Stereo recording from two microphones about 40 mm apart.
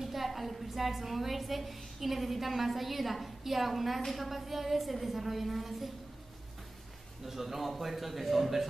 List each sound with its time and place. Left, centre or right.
0.0 s a woman's voice: centre
7.2 s a woman's voice: centre